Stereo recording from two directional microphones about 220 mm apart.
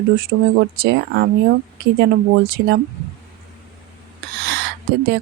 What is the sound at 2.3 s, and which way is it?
Speech, 45° right (ahead or behind).